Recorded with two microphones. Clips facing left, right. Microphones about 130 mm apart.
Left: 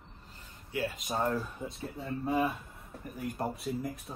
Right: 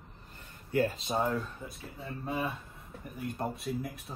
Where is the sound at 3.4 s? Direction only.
Centre (ahead or behind).